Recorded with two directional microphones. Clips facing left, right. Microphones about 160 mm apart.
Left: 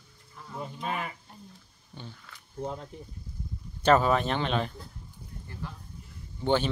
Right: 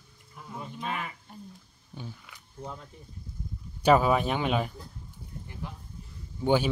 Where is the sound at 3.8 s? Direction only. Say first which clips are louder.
Right 1 dB; 10° right (ahead or behind).